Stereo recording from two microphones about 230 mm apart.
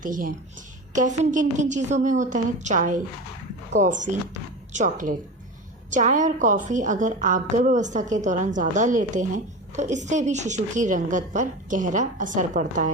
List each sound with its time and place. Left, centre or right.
0.0 s a woman's voice: right